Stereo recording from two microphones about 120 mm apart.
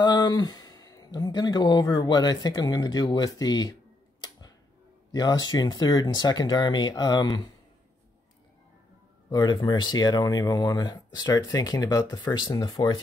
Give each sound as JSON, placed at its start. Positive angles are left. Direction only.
{"t": 0.0, "sound": "speech", "side_deg": 35}
{"t": 5.1, "sound": "speech", "side_deg": 35}
{"t": 9.3, "sound": "speech", "side_deg": 35}